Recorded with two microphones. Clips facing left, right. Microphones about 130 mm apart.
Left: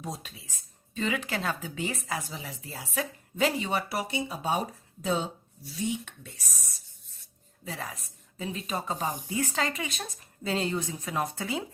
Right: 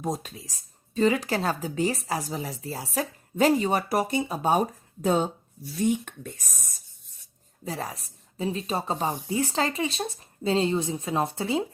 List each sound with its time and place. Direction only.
0.0 s speech: 45° right (ahead or behind)
7.6 s a woman's voice: 35° right (ahead or behind)